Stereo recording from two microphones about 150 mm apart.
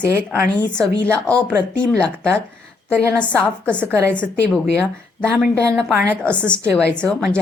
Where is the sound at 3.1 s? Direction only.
10° left (ahead or behind).